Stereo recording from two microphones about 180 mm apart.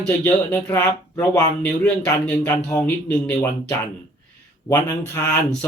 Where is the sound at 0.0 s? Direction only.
10° left (ahead or behind).